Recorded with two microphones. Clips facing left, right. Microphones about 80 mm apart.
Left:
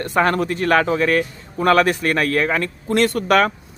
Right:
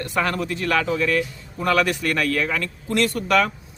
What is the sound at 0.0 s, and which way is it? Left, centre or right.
A man's voice, left.